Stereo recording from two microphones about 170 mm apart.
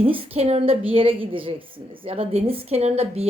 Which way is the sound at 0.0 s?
35° right (ahead or behind).